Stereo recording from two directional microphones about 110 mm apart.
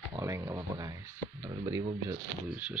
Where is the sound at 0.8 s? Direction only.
30° right (ahead or behind).